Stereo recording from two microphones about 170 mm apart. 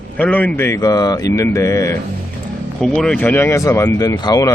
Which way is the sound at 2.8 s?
5° left (ahead or behind).